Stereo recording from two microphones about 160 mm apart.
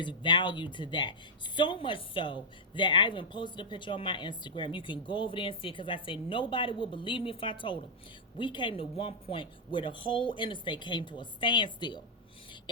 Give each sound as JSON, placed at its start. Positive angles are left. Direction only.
{"t": 0.0, "sound": "a woman's voice", "side_deg": 30}